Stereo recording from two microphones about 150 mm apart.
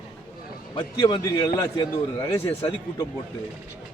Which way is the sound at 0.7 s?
30° left (ahead or behind).